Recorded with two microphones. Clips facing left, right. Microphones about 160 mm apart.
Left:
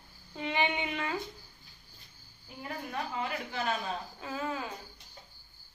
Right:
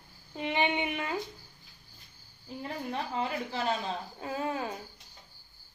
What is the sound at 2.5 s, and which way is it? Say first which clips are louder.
Speech: right 3 dB; 30° right (ahead or behind).